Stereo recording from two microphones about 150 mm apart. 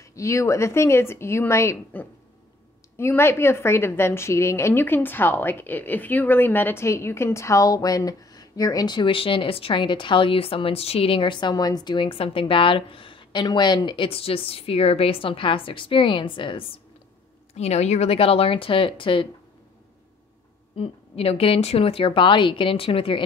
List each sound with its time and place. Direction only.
0.0 s a woman's voice: 20° left (ahead or behind)
17.6 s a woman's voice: 45° left (ahead or behind)
20.7 s a woman's voice: 40° left (ahead or behind)